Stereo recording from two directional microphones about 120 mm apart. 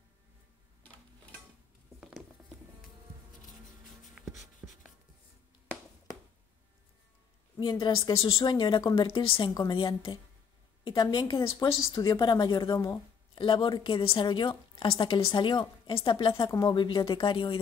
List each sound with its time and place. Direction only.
2.0 s patter: 5° right (ahead or behind)
4.2 s writing: 5° right (ahead or behind)
7.5 s speech: 35° left (ahead or behind)
9.5 s a woman's voice: 30° left (ahead or behind)
9.8 s a woman's voice: 45° left (ahead or behind)
16.4 s a woman's voice: 35° left (ahead or behind)